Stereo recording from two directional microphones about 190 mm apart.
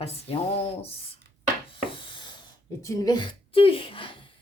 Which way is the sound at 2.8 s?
20° left (ahead or behind).